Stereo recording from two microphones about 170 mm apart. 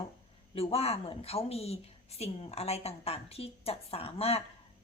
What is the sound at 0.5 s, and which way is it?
Speech, 35° left (ahead or behind).